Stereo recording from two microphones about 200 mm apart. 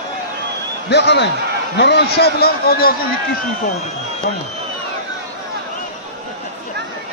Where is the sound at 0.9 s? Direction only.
55° left (ahead or behind).